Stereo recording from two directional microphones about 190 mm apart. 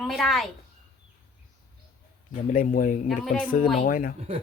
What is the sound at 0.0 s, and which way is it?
Speech, centre (ahead or behind).